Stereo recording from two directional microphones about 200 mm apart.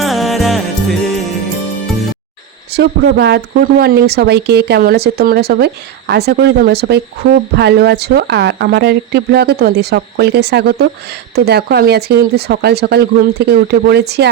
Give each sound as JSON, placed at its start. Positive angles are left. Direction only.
{"t": 0.0, "sound": "music", "side_deg": 0}
{"t": 2.7, "sound": "speech", "side_deg": -55}